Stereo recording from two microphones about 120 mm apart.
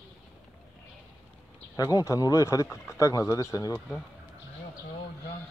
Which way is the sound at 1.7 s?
30° left (ahead or behind).